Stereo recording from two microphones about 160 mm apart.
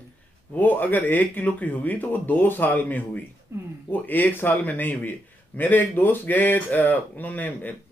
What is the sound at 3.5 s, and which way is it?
Speech, 15° right (ahead or behind).